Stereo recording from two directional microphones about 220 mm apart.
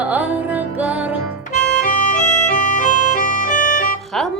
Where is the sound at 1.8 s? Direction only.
35° left (ahead or behind).